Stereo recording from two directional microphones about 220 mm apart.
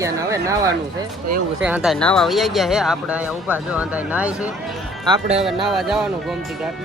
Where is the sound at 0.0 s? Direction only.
15° right (ahead or behind).